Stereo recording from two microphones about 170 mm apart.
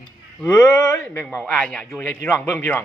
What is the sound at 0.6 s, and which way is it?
Speech, 20° left (ahead or behind).